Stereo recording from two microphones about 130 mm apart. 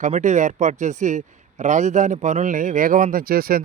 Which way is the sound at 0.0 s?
70° right (ahead or behind).